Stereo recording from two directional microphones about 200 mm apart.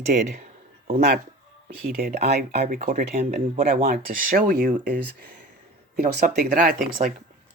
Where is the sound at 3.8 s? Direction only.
45° right (ahead or behind).